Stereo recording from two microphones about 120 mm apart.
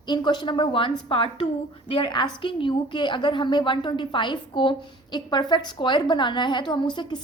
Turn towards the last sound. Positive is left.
turn(degrees=40)  # may be behind; listen again after turning